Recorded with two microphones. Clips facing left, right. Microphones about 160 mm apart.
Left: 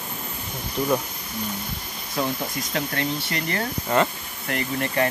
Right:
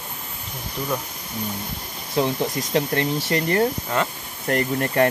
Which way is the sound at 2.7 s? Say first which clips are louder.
Right 5 dB; 35° right (ahead or behind).